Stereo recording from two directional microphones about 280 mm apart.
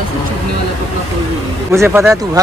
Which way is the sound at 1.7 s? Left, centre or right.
Centre.